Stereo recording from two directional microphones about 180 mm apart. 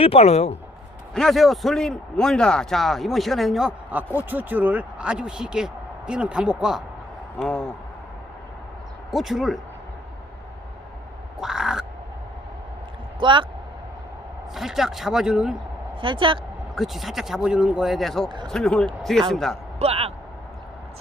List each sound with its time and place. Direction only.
0.0 s speech: 35° left (ahead or behind)
1.1 s a man's voice: centre (ahead or behind)
9.0 s a man's voice: centre (ahead or behind)
11.3 s crow: centre (ahead or behind)
13.1 s speech: 25° right (ahead or behind)
14.5 s a man's voice: centre (ahead or behind)
16.0 s a woman's voice: 30° right (ahead or behind)
16.7 s a man's voice: centre (ahead or behind)
19.8 s speech: 35° right (ahead or behind)